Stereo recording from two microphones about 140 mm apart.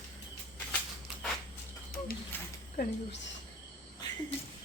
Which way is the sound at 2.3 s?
15° left (ahead or behind).